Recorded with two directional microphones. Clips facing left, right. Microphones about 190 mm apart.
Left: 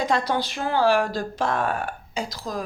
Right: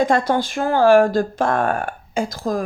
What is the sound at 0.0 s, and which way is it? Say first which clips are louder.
Speech: right 6 dB; 50° right (ahead or behind).